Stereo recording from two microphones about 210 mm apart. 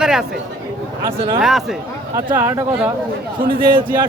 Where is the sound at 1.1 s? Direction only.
25° right (ahead or behind).